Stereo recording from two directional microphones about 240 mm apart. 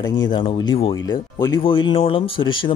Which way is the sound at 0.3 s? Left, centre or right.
Left.